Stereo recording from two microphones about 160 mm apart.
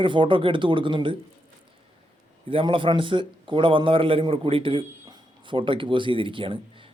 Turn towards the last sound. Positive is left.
turn(degrees=-30)  # may be behind; listen again after turning